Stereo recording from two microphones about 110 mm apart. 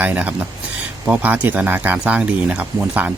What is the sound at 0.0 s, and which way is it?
Speech, 15° right (ahead or behind).